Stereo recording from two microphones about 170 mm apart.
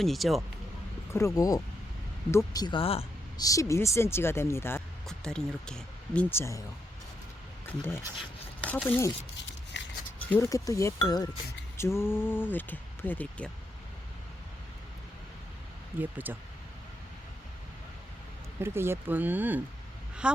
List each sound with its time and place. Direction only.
0.0 s speech: centre (ahead or behind)
1.1 s speech: 20° left (ahead or behind); by 3.1 s 35° left (ahead or behind)
3.3 s speech: 20° left (ahead or behind)
5.0 s speech: 5° left (ahead or behind)
7.8 s speech: 15° left (ahead or behind)
9.7 s scissors: 90° left
10.2 s speech: 15° left (ahead or behind)
16.0 s speech: 10° right (ahead or behind)
18.6 s speech: 15° right (ahead or behind)